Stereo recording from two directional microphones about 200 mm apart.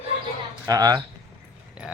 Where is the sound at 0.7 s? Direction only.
20° right (ahead or behind).